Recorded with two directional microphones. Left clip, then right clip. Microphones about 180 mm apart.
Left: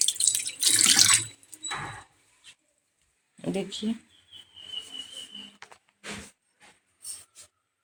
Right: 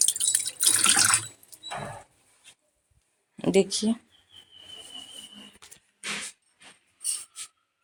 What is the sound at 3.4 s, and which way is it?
Speech, 35° right (ahead or behind).